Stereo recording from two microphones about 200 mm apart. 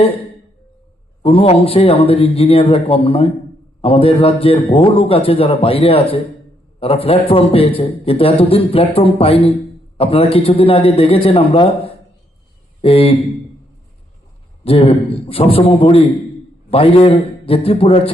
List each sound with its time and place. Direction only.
1.2 s a man's voice: 30° left (ahead or behind)
14.6 s a man's voice: 30° left (ahead or behind)